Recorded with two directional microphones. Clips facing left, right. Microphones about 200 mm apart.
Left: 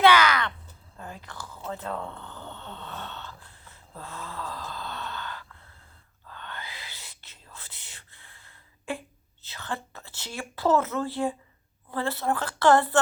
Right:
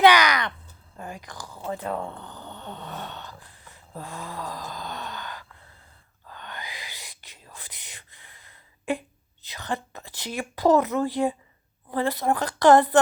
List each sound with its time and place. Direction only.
0.0 s a sound: 15° right (ahead or behind)
0.9 s whispering: 15° right (ahead or behind)
1.6 s snoring: 15° right (ahead or behind)
6.2 s gasp: 15° right (ahead or behind)
11.9 s a woman's voice: 15° right (ahead or behind)